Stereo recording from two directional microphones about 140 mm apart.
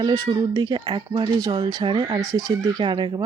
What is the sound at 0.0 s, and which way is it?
Speech, 30° right (ahead or behind).